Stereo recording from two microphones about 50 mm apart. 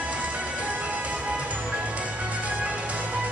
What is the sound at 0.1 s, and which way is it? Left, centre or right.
Music, right.